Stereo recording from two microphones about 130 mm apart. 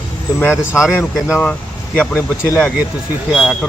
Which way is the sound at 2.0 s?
15° left (ahead or behind).